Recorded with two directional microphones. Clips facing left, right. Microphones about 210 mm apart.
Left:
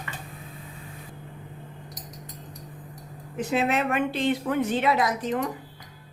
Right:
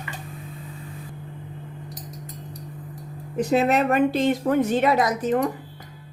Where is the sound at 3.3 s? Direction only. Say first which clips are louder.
Right 5 dB; 40° right (ahead or behind).